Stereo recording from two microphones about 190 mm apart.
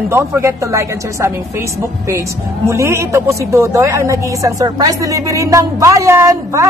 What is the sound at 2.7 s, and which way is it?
A woman's voice, 15° right (ahead or behind).